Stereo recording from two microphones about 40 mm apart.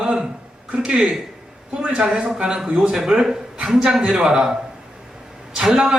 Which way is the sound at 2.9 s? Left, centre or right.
Centre.